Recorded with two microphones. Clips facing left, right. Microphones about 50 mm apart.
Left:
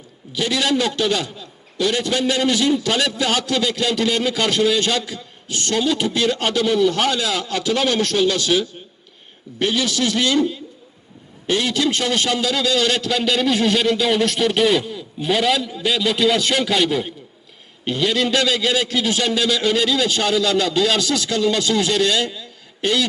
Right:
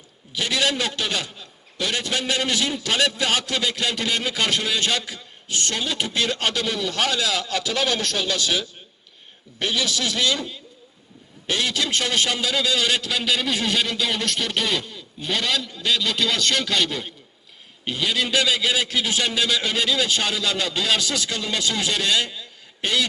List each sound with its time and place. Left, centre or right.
0.3 s a man's voice: right
6.4 s speech: left
9.6 s speech: left
11.5 s speech: centre
12.0 s a man's voice: centre